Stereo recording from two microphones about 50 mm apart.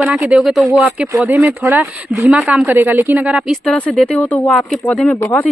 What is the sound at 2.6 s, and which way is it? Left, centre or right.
Speech, right.